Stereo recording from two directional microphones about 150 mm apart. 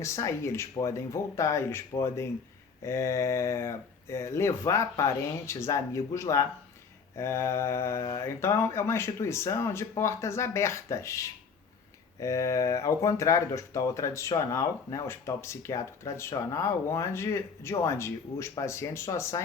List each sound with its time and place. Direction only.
0.0 s speech: 20° left (ahead or behind)